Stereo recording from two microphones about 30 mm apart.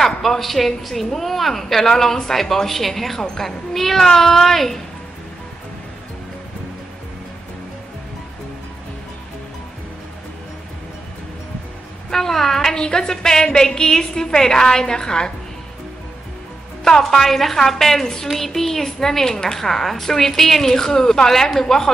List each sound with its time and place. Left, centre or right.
0.0 s a woman's voice: centre
12.1 s speech: centre
12.7 s a woman's voice: left
17.0 s speech: centre
18.0 s a woman's voice: centre
18.3 s speech: centre; by 19.7 s left
19.7 s speech: centre